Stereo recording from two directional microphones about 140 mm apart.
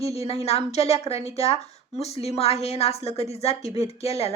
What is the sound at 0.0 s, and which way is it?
A woman's voice, 45° left (ahead or behind).